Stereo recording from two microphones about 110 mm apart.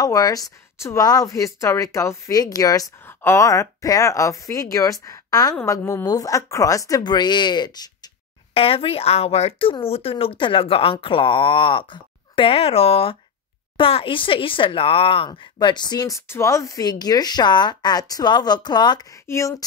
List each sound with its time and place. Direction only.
0.0 s speech: 35° left (ahead or behind)
3.1 s speech: 20° left (ahead or behind); by 8.1 s 40° left (ahead or behind)
8.5 s speech: 60° left (ahead or behind); by 16.2 s 40° left (ahead or behind)
16.2 s speech: 25° left (ahead or behind); by 19.0 s 40° left (ahead or behind)
19.2 s speech: 25° left (ahead or behind)